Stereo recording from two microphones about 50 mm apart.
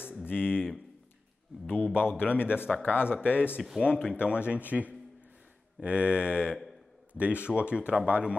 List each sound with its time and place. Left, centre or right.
0.2 s speech: left
1.7 s speech: left
4.1 s speech: right